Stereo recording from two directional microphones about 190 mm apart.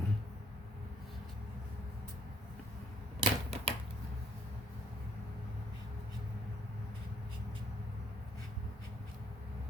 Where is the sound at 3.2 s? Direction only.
30° right (ahead or behind).